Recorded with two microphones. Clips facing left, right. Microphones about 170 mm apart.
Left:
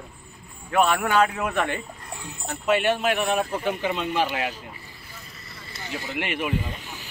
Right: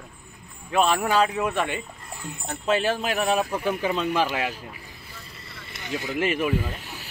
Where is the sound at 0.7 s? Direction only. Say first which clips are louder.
Even; 25° right (ahead or behind).